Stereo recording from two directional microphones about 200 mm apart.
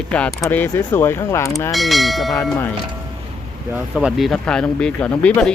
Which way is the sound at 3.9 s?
Centre (ahead or behind).